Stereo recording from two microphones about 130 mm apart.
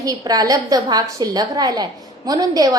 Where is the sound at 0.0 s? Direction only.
30° right (ahead or behind).